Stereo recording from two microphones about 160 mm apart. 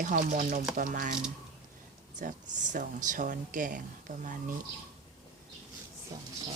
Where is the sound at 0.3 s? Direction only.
50° right (ahead or behind).